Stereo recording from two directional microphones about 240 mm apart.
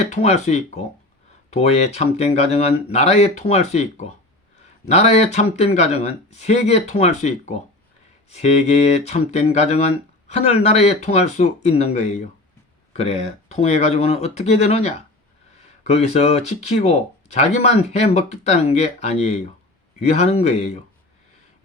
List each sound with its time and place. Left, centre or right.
0.0 s speech: left